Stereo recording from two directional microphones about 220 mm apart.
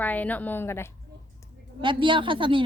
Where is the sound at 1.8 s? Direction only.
20° right (ahead or behind).